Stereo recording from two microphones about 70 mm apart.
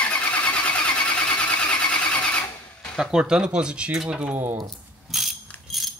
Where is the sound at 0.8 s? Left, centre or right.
Centre.